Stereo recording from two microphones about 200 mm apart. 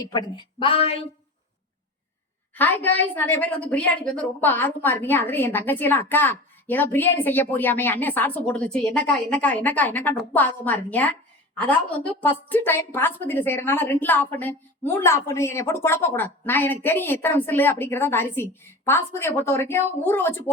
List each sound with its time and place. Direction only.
0.3 s speech: 25° left (ahead or behind)
2.6 s a woman's voice: 10° left (ahead or behind)